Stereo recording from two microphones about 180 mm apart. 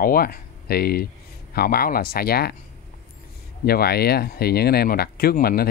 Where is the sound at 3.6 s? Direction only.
60° left (ahead or behind).